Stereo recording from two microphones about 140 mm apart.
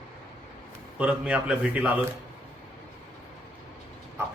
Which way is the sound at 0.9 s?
10° right (ahead or behind).